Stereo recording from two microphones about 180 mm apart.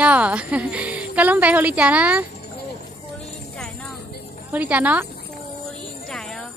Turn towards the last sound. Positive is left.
turn(degrees=5)  # may be behind; listen again after turning